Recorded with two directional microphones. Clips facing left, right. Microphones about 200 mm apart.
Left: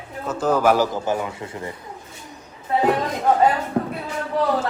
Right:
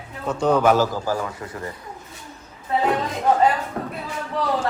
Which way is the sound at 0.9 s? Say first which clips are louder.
Left 1 dB; 20° left (ahead or behind).